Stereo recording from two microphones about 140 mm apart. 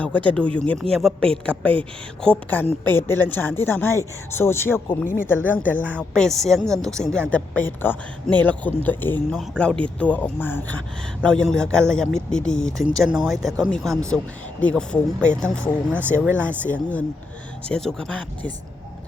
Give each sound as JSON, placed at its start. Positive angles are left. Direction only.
{"t": 0.3, "sound": "a woman's voice", "side_deg": 10}